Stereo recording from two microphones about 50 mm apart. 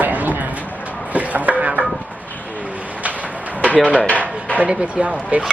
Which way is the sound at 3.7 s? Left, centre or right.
Left.